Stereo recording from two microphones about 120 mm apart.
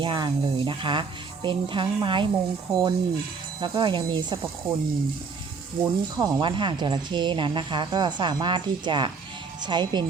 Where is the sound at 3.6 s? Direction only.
40° right (ahead or behind).